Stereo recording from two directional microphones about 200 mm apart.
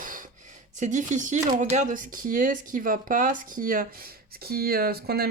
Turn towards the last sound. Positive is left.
turn(degrees=-50)  # may be behind; listen again after turning